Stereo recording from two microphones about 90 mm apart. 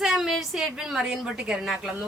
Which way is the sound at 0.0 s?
5° right (ahead or behind).